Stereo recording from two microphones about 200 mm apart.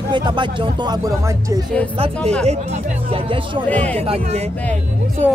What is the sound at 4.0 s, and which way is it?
Speech, 30° right (ahead or behind).